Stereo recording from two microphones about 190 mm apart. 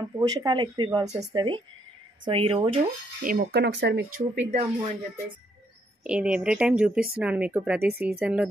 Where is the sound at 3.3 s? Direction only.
60° right (ahead or behind); by 4.5 s 75° right (ahead or behind).